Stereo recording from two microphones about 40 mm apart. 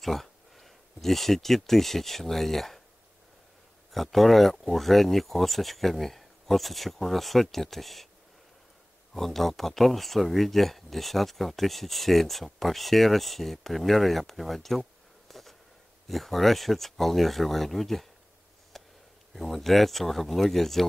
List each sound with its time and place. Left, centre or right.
0.0 s speech: centre
3.9 s speech: centre
9.1 s speech: centre
18.7 s a sound: centre
19.3 s speech: centre